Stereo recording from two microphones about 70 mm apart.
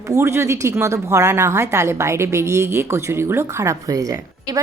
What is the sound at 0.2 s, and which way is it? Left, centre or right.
A woman's voice, right.